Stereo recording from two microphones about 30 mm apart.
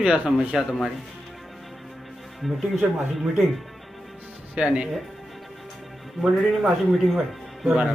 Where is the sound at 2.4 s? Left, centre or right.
Centre.